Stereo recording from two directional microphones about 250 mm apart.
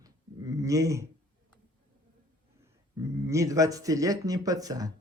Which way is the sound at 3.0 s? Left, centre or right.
Centre.